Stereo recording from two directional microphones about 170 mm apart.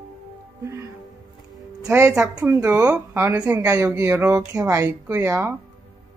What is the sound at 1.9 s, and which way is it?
Speech, 15° right (ahead or behind).